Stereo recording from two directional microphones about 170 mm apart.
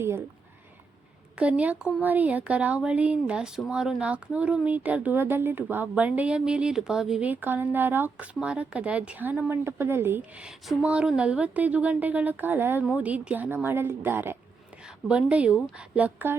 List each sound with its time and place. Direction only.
0.0 s speech: 15° right (ahead or behind)
1.4 s speech: 10° right (ahead or behind)